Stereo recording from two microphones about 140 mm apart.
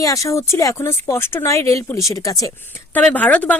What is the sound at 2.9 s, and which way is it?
Speech, 10° left (ahead or behind).